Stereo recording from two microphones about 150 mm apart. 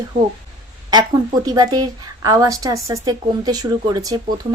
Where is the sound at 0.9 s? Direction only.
25° right (ahead or behind).